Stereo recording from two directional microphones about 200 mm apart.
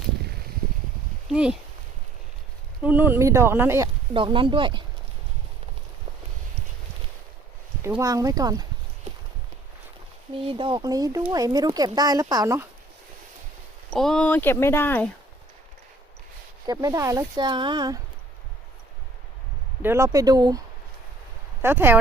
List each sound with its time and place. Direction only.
1.3 s speech: 5° right (ahead or behind)
2.8 s speech: 10° right (ahead or behind)
4.1 s speech: 25° right (ahead or behind)
7.8 s speech: 10° right (ahead or behind)
10.5 s speech: 25° right (ahead or behind)
13.9 s speech: centre (ahead or behind)
16.6 s speech: 15° right (ahead or behind)
19.8 s speech: 15° right (ahead or behind)
21.6 s speech: 10° right (ahead or behind)